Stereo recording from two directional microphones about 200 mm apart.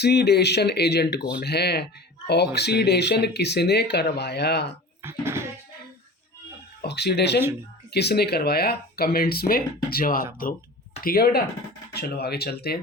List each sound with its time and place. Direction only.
0.0 s speech: 55° left (ahead or behind)
5.0 s speech: 15° right (ahead or behind)
6.8 s speech: 55° left (ahead or behind)